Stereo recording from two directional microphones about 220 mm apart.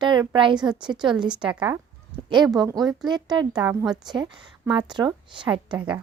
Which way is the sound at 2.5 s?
15° right (ahead or behind).